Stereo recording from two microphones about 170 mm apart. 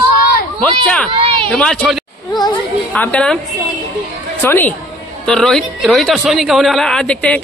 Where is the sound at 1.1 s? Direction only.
30° right (ahead or behind).